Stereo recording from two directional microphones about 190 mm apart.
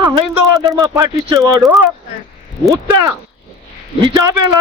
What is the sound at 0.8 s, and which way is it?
Speech, 20° right (ahead or behind).